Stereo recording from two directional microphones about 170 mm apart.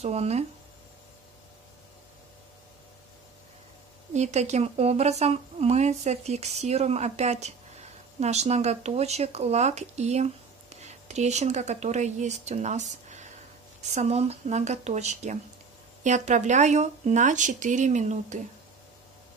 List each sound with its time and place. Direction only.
0.0 s speech: 40° right (ahead or behind)
4.1 s speech: 40° right (ahead or behind)